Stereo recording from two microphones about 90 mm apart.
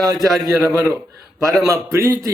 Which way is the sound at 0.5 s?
25° right (ahead or behind).